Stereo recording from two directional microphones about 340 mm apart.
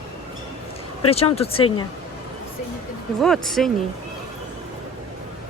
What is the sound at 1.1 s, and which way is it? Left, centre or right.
Speech, centre.